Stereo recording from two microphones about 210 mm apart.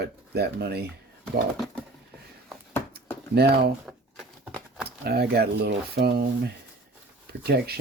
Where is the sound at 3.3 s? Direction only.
50° right (ahead or behind).